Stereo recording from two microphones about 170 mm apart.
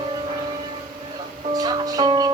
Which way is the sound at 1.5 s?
25° right (ahead or behind).